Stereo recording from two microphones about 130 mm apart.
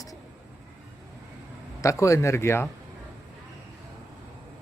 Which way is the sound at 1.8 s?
25° left (ahead or behind).